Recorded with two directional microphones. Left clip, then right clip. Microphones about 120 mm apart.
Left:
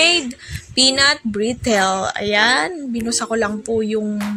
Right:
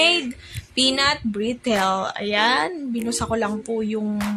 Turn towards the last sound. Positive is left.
turn(degrees=25)  # may be behind; listen again after turning